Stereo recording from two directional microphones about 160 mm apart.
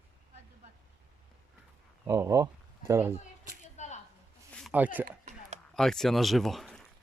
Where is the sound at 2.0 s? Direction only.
20° right (ahead or behind).